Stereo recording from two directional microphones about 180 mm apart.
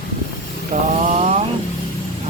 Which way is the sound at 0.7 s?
45° right (ahead or behind).